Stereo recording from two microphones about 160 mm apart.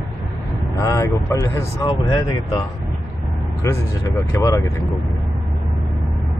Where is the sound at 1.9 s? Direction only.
30° left (ahead or behind).